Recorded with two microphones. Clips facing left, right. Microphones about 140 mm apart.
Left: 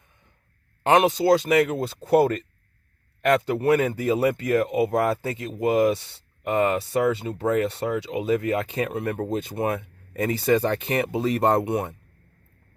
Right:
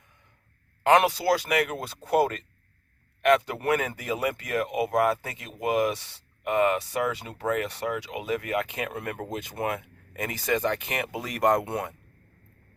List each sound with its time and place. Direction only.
0.9 s speech: 20° left (ahead or behind)
11.6 s speech: 20° left (ahead or behind)